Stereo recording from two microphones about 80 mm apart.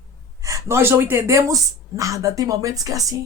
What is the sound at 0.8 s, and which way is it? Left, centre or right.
Speech, right.